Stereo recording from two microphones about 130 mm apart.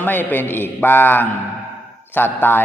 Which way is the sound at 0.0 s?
15° left (ahead or behind).